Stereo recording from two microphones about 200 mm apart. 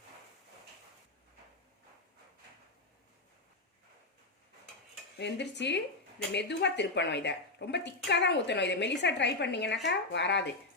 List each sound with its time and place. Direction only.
5.1 s a woman's voice: 60° left (ahead or behind)